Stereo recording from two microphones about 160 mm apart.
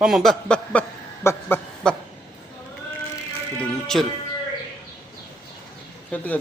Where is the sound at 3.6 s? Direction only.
5° left (ahead or behind).